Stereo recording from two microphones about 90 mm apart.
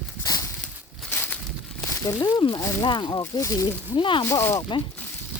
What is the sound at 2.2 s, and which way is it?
Speech, 55° left (ahead or behind).